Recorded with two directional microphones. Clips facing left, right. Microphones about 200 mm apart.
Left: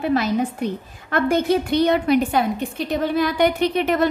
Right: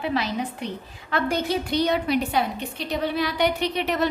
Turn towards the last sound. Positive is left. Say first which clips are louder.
# left 6 dB
turn(degrees=50)  # may be behind; listen again after turning